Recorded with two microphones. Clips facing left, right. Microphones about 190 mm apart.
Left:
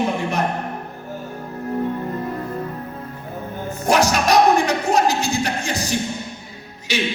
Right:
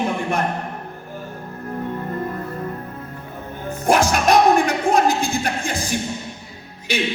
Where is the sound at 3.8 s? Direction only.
50° right (ahead or behind).